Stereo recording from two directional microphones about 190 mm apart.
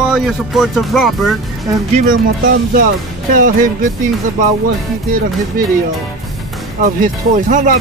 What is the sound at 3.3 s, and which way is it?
Speech, 45° right (ahead or behind).